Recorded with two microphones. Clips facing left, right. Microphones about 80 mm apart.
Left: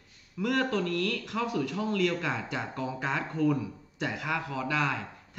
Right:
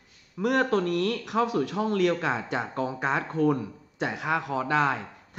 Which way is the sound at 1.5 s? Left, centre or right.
Right.